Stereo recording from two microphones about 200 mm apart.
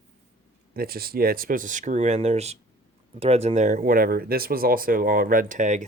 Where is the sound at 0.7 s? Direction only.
50° right (ahead or behind).